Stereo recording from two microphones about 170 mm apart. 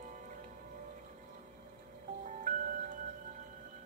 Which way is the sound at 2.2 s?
50° right (ahead or behind).